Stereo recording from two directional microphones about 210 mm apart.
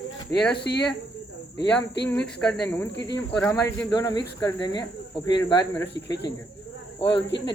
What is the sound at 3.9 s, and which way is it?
Speech, 20° left (ahead or behind).